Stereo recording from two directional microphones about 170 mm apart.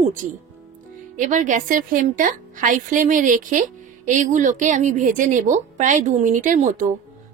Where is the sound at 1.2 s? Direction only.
50° right (ahead or behind).